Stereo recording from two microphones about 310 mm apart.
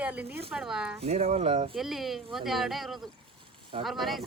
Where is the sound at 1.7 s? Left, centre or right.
Centre.